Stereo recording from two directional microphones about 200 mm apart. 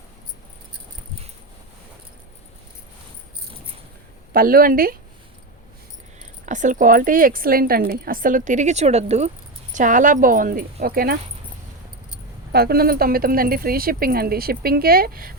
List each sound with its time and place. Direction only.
4.4 s speech: 45° right (ahead or behind)
6.4 s speech: 40° right (ahead or behind)
12.5 s speech: 50° right (ahead or behind)